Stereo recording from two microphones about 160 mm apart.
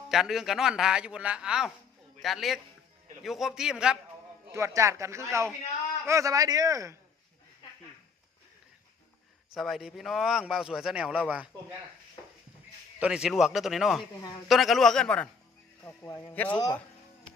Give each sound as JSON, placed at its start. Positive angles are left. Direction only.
{"t": 0.1, "sound": "a man's voice", "side_deg": 0}
{"t": 4.5, "sound": "speech", "side_deg": -20}
{"t": 9.6, "sound": "a man's voice", "side_deg": 0}
{"t": 13.0, "sound": "a man's voice", "side_deg": -5}